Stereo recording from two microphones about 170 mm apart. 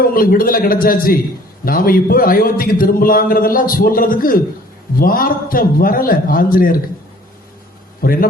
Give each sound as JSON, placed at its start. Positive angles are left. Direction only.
{"t": 0.0, "sound": "a man's voice", "side_deg": 60}
{"t": 8.0, "sound": "a man's voice", "side_deg": 55}